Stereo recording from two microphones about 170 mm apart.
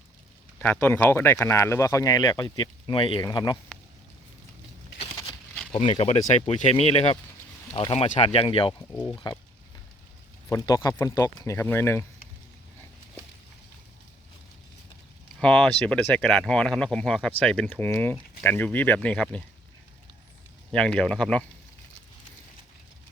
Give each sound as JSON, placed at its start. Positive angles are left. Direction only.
{"t": 0.6, "sound": "speech", "side_deg": 10}
{"t": 5.7, "sound": "speech", "side_deg": 35}
{"t": 10.5, "sound": "speech", "side_deg": 20}
{"t": 15.4, "sound": "speech", "side_deg": 5}
{"t": 20.7, "sound": "speech", "side_deg": 5}